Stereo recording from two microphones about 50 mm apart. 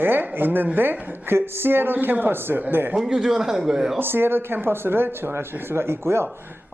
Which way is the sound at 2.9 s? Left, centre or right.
Centre.